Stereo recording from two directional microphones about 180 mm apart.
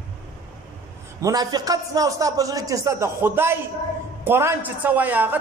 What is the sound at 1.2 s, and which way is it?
A man's voice, 20° right (ahead or behind).